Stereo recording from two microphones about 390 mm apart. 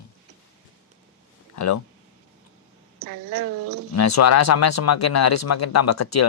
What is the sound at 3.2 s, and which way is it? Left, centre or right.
Speech, right.